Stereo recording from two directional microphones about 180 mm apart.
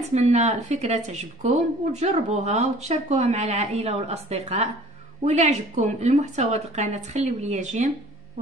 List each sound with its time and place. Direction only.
0.1 s speech: 40° right (ahead or behind)